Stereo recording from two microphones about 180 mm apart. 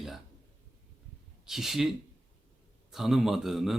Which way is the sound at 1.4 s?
Centre (ahead or behind).